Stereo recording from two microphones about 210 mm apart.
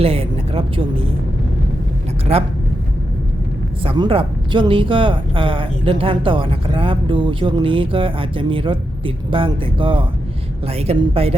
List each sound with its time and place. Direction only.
0.0 s speech: 25° right (ahead or behind)
2.3 s speech: 30° right (ahead or behind)
3.8 s speech: 25° right (ahead or behind)